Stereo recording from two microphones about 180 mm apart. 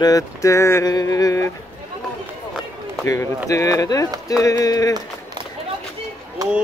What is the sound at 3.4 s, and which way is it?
Speech, 20° left (ahead or behind).